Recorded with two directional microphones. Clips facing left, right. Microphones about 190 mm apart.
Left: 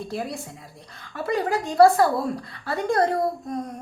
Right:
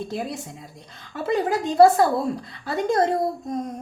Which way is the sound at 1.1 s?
20° right (ahead or behind).